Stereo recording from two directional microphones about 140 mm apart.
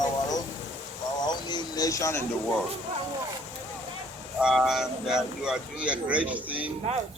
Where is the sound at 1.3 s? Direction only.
30° left (ahead or behind).